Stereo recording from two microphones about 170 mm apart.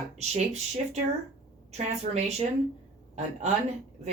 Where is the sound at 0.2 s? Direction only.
40° right (ahead or behind).